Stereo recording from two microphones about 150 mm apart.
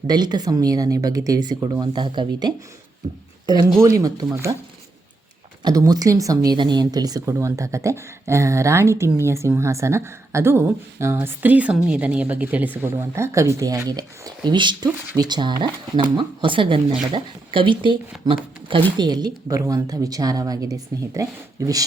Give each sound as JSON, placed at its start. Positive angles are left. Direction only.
{"t": 0.1, "sound": "speech", "side_deg": -30}
{"t": 3.8, "sound": "speech", "side_deg": -20}
{"t": 5.6, "sound": "speech", "side_deg": -25}